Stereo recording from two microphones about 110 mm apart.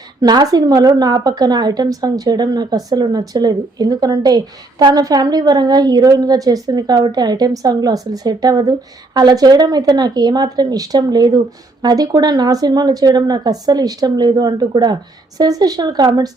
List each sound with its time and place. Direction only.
0.2 s speech: 35° right (ahead or behind)